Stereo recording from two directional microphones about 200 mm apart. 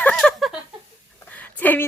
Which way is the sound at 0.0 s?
5° left (ahead or behind).